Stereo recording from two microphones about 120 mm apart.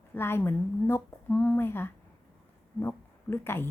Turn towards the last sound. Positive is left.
turn(degrees=20)  # may be behind; listen again after turning